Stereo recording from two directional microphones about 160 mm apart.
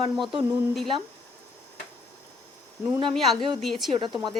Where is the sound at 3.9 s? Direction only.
30° right (ahead or behind).